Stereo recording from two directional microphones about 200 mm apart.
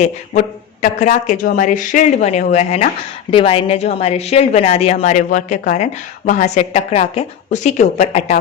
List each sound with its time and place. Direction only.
0.0 s a woman's voice: 35° left (ahead or behind)